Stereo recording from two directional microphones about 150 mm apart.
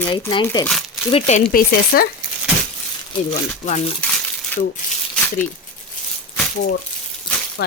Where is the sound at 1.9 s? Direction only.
90° left.